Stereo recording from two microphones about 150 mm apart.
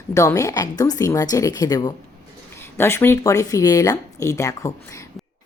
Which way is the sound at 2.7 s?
15° left (ahead or behind).